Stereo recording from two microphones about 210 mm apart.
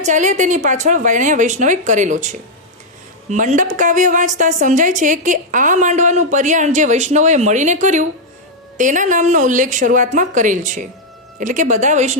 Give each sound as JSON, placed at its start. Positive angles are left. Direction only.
{"t": 0.0, "sound": "a woman's voice", "side_deg": -35}